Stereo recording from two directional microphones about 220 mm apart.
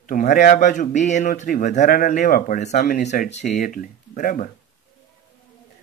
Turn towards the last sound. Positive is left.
turn(degrees=35)  # may be behind; listen again after turning